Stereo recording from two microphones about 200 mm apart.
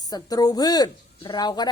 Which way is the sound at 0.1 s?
20° left (ahead or behind).